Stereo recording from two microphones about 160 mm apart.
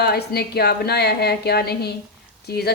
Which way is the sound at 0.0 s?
80° left.